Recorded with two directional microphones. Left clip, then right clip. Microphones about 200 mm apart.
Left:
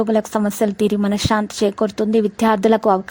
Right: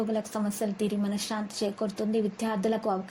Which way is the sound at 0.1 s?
45° left (ahead or behind).